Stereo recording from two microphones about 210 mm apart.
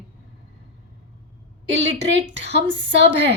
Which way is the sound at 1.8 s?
55° right (ahead or behind).